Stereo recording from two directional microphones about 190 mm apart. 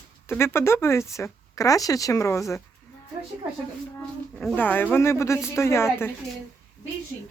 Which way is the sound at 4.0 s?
5° left (ahead or behind).